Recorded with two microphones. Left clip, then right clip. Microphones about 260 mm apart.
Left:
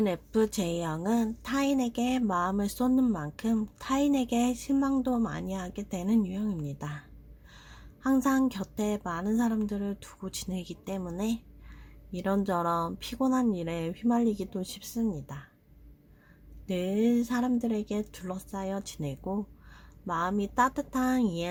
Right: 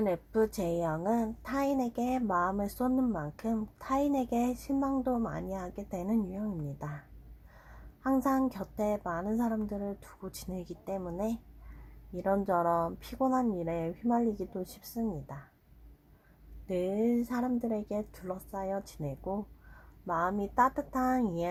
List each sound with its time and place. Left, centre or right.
0.0 s speech: left
8.0 s speech: left
12.1 s speech: left
14.8 s speech: left
16.6 s speech: left